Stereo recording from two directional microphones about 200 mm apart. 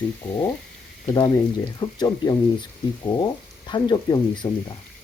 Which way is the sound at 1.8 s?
20° left (ahead or behind).